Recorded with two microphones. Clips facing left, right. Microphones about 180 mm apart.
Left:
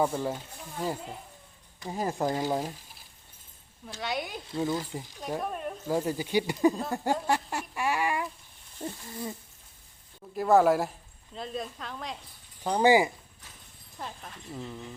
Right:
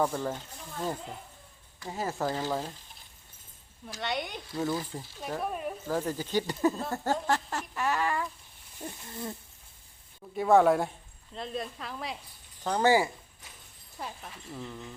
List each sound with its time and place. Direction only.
0.0 s speech: 10° left (ahead or behind)
3.8 s speech: centre (ahead or behind)
4.5 s speech: 20° left (ahead or behind)
5.4 s speech: 5° right (ahead or behind)
5.9 s speech: 10° left (ahead or behind)
6.9 s a sound: 15° left (ahead or behind)
8.8 s speech: 20° left (ahead or behind)
10.3 s speech: centre (ahead or behind)
12.6 s speech: 15° left (ahead or behind)
14.0 s speech: 5° right (ahead or behind)
14.5 s speech: 10° left (ahead or behind)